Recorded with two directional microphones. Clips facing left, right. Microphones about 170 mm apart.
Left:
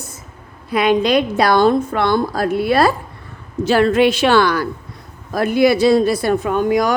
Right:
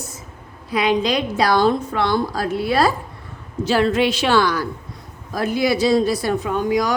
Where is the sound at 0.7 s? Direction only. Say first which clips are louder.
Left 4 dB; 55° left (ahead or behind).